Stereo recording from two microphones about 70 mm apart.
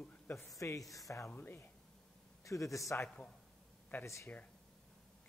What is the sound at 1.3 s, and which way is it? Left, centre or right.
Speech, left.